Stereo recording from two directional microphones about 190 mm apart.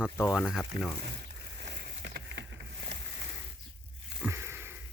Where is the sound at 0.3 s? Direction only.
Centre (ahead or behind).